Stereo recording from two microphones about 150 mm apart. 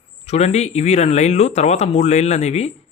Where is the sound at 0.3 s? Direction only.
45° left (ahead or behind).